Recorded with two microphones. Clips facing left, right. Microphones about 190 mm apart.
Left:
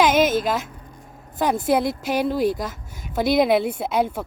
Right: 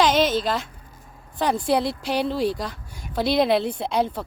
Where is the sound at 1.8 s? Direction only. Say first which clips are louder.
Left 2 dB; 45° left (ahead or behind).